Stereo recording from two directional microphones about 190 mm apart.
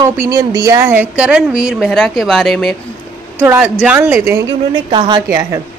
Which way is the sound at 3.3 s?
10° right (ahead or behind).